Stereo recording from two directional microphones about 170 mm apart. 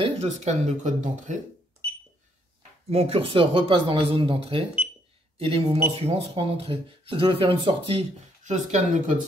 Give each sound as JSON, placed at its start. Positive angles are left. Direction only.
{"t": 0.0, "sound": "speech", "side_deg": -40}
{"t": 2.9, "sound": "speech", "side_deg": -35}